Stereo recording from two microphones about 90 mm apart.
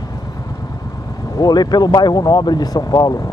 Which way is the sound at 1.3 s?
50° left (ahead or behind).